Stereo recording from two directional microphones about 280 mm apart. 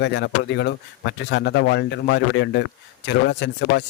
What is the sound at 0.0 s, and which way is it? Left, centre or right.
Speech, left.